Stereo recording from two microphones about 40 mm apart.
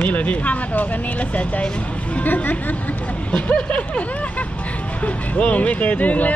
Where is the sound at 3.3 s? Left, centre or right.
Left.